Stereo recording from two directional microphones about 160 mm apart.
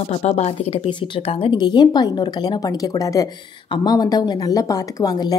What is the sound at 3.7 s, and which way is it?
Speech, 25° left (ahead or behind).